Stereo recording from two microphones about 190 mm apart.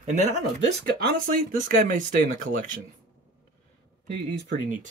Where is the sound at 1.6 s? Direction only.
40° right (ahead or behind).